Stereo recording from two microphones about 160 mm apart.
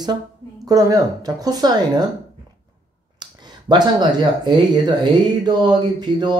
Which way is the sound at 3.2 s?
25° right (ahead or behind).